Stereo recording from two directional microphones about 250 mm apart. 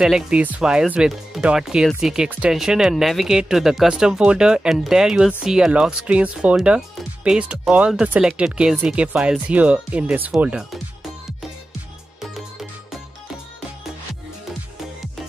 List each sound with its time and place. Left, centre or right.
0.0 s speech: centre
12.4 s music: centre